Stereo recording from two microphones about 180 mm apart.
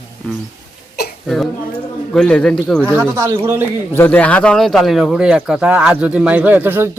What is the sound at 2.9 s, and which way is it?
Speech, 15° right (ahead or behind).